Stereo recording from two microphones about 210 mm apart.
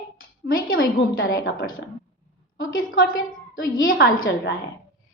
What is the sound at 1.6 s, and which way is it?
Speech, 55° left (ahead or behind).